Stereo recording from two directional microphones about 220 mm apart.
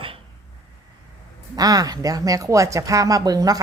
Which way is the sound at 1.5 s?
15° right (ahead or behind).